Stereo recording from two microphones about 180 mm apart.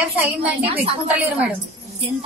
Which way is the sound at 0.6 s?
30° right (ahead or behind).